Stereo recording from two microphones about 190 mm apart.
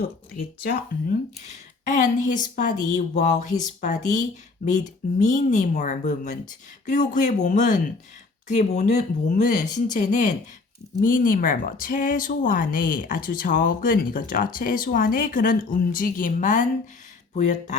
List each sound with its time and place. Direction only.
0.0 s speech: 55° left (ahead or behind)